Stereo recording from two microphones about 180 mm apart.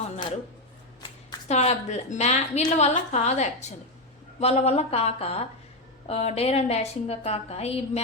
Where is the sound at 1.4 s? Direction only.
35° left (ahead or behind).